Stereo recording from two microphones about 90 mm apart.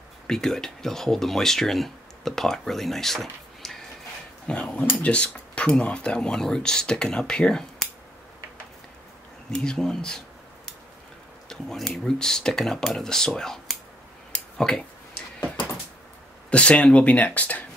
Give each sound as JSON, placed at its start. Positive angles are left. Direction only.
{"t": 0.3, "sound": "speech", "side_deg": 5}
{"t": 3.6, "sound": "a sound", "side_deg": 5}
{"t": 4.5, "sound": "speech", "side_deg": 15}
{"t": 9.5, "sound": "speech", "side_deg": 10}
{"t": 11.4, "sound": "speech", "side_deg": 5}
{"t": 14.3, "sound": "a sound", "side_deg": 10}
{"t": 16.4, "sound": "speech", "side_deg": 15}